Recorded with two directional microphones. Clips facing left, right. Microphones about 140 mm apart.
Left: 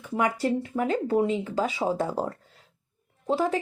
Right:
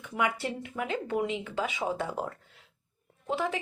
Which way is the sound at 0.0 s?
40° left (ahead or behind).